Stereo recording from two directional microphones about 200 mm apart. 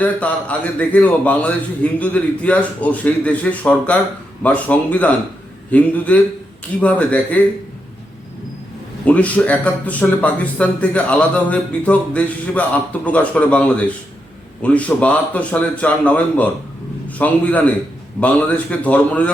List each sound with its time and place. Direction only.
0.0 s speech: 5° left (ahead or behind)
9.0 s speech: 5° left (ahead or behind)